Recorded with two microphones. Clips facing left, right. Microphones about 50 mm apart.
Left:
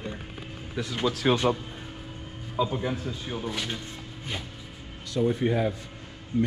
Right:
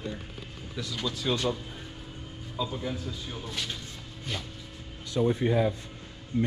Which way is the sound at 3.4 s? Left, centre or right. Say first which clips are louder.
Left 3 dB; centre.